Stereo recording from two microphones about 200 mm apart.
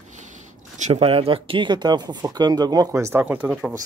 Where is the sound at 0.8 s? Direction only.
30° right (ahead or behind).